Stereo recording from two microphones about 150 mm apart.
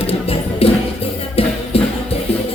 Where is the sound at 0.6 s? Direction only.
40° left (ahead or behind).